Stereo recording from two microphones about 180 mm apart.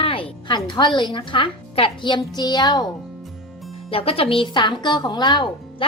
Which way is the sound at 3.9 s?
30° left (ahead or behind).